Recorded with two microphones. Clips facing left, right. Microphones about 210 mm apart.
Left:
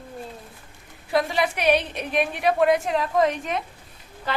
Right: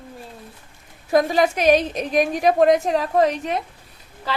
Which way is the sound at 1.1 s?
45° right (ahead or behind).